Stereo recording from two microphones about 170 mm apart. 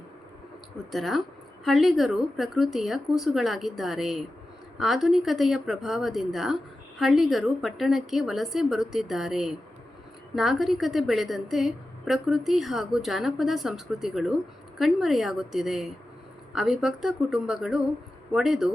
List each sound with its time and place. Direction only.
0.9 s a woman's voice: centre (ahead or behind)